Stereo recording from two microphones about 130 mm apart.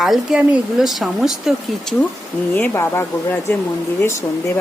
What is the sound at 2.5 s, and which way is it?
A woman's voice, 15° left (ahead or behind).